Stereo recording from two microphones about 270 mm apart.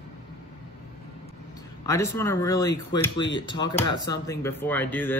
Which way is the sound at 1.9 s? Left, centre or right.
Centre.